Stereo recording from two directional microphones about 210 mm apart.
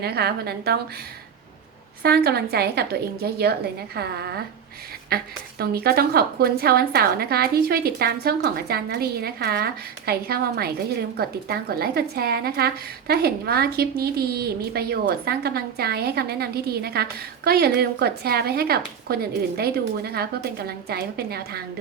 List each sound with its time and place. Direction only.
0.0 s a woman's voice: 50° right (ahead or behind)
2.0 s a woman's voice: 50° right (ahead or behind)